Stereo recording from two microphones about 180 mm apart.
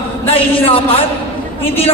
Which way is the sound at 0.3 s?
30° left (ahead or behind).